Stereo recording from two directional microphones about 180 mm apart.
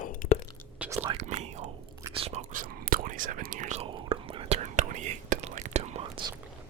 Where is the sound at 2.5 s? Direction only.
50° right (ahead or behind).